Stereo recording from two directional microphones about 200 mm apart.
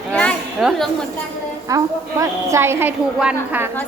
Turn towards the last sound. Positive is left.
turn(degrees=-5)  # may be behind; listen again after turning